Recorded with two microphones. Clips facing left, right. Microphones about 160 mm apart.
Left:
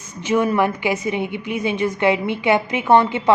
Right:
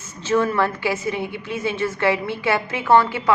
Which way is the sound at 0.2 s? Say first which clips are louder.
Left 2 dB; 15° left (ahead or behind).